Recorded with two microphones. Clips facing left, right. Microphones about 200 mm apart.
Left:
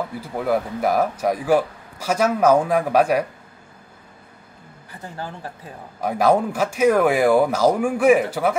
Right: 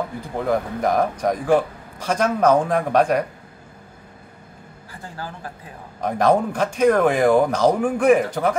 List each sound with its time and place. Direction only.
0.2 s speech: 5° left (ahead or behind)
5.1 s speech: 25° left (ahead or behind)
5.9 s speech: 5° left (ahead or behind)